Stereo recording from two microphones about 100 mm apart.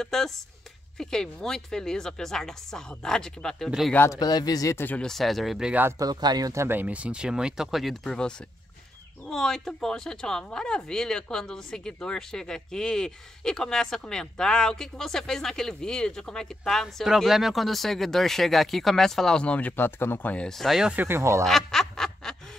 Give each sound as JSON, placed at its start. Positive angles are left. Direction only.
{"t": 0.0, "sound": "speech", "side_deg": 5}
{"t": 4.1, "sound": "speech", "side_deg": 40}
{"t": 4.7, "sound": "speech", "side_deg": 20}
{"t": 5.0, "sound": "speech", "side_deg": 0}
{"t": 5.9, "sound": "speech", "side_deg": -40}
{"t": 20.4, "sound": "speech", "side_deg": 0}
{"t": 20.9, "sound": "speech", "side_deg": -20}
{"t": 21.5, "sound": "snicker", "side_deg": 5}